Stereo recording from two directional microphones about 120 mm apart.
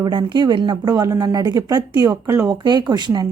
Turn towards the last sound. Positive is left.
turn(degrees=-35)  # may be behind; listen again after turning